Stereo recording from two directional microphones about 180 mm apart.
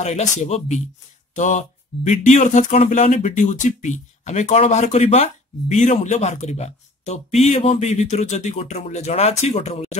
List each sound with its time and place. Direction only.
0.0 s speech: 40° left (ahead or behind)